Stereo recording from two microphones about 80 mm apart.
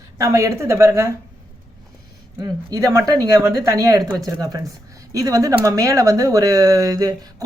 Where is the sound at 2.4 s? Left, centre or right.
Right.